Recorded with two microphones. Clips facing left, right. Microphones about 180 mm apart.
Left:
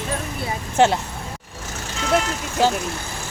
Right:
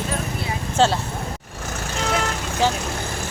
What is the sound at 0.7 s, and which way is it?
Speech, 20° left (ahead or behind).